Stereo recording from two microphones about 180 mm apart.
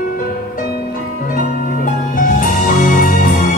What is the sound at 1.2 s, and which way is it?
Music, 50° left (ahead or behind).